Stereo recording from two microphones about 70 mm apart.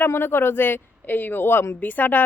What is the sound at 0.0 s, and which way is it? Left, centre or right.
Speech, left.